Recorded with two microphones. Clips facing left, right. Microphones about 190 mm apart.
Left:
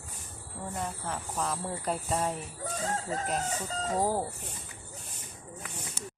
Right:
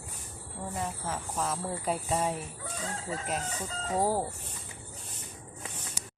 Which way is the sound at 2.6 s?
40° left (ahead or behind).